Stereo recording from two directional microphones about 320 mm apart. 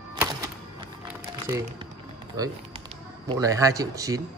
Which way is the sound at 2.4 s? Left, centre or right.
Centre.